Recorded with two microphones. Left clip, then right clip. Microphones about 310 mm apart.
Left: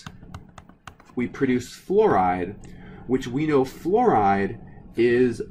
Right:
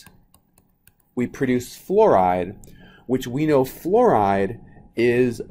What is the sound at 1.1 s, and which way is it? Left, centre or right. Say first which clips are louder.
Speech: right 1 dB; right.